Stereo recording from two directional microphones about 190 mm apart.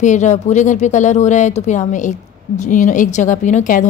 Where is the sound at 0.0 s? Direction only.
40° left (ahead or behind).